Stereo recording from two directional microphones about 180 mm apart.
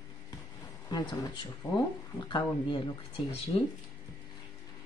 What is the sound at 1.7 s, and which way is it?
Speech, 25° left (ahead or behind).